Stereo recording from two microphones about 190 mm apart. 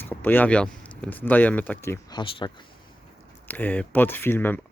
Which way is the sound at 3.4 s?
10° left (ahead or behind).